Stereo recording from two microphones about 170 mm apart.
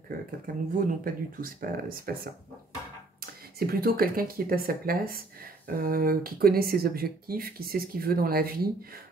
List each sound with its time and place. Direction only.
0.1 s speech: 55° right (ahead or behind)
3.2 s speech: 60° right (ahead or behind)